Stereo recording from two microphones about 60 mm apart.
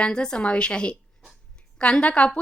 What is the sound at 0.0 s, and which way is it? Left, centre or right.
A woman's voice, centre.